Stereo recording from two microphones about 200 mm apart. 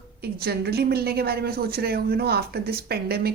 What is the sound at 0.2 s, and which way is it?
Speech, 50° right (ahead or behind).